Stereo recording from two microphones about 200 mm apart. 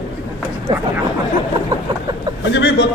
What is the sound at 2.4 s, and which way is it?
Speech, 65° left (ahead or behind).